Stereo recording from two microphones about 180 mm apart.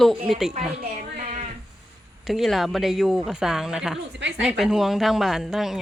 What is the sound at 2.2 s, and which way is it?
Speech, centre (ahead or behind).